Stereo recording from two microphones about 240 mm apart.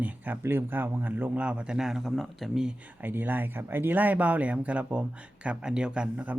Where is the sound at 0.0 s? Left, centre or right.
Centre.